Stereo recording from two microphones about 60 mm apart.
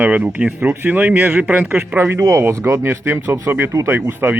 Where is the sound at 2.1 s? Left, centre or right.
Right.